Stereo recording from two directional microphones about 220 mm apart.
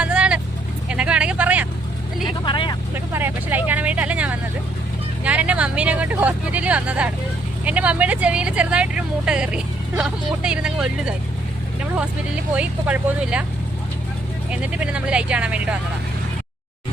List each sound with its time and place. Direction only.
0.0 s vehicle: 5° right (ahead or behind)
2.4 s vehicle: 20° left (ahead or behind)
3.1 s vehicle: 10° right (ahead or behind)
5.2 s speech: 5° right (ahead or behind)
12.5 s speech: 5° right (ahead or behind)
14.5 s speech: 5° right (ahead or behind)